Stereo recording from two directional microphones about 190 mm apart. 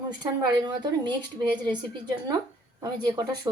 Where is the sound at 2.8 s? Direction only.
20° right (ahead or behind).